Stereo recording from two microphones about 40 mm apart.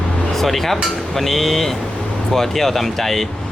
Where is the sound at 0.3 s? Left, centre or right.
Centre.